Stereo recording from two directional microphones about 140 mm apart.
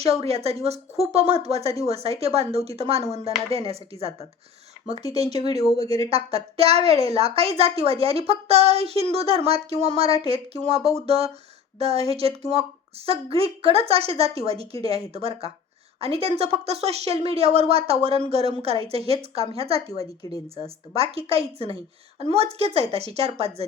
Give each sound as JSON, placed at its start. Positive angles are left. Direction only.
{"t": 0.2, "sound": "speech", "side_deg": -45}
{"t": 19.9, "sound": "a woman's voice", "side_deg": 25}
{"t": 20.9, "sound": "speech", "side_deg": -45}